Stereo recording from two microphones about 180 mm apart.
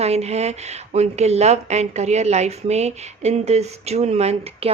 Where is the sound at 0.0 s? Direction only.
35° right (ahead or behind).